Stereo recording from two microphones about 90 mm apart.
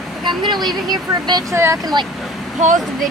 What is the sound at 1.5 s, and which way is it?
Speech, 30° right (ahead or behind).